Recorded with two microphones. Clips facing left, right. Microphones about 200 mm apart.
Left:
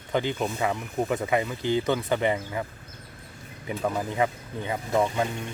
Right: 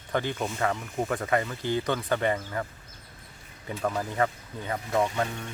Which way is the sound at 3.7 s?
15° left (ahead or behind).